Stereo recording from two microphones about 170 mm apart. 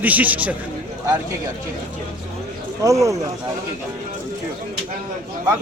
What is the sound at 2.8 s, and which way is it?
Speech, 20° right (ahead or behind).